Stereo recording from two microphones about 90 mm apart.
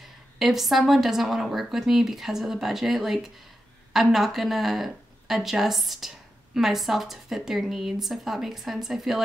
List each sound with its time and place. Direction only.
0.4 s speech: 5° right (ahead or behind)